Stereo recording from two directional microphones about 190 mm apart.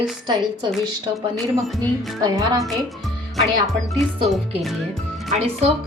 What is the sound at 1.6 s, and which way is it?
Speech, centre (ahead or behind).